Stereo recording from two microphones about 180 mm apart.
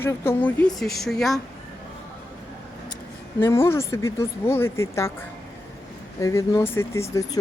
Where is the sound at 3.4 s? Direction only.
15° left (ahead or behind).